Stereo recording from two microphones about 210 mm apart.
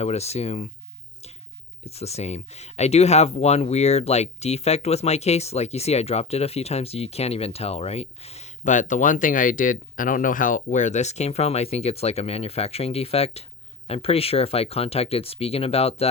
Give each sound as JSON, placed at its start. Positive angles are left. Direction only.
{"t": 0.0, "sound": "speech", "side_deg": 30}
{"t": 1.8, "sound": "speech", "side_deg": 30}